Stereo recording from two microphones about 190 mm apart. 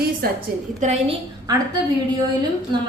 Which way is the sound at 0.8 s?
40° right (ahead or behind).